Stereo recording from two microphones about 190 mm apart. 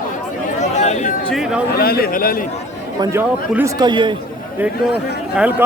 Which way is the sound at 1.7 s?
55° left (ahead or behind).